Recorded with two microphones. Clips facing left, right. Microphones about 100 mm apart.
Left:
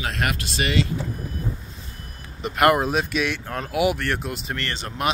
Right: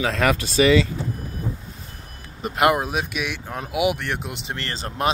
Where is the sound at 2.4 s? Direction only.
40° right (ahead or behind).